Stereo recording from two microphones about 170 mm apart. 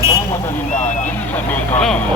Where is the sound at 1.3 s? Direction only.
5° left (ahead or behind).